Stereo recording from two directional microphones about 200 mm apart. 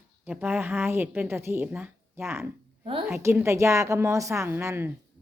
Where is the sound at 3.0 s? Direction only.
10° right (ahead or behind).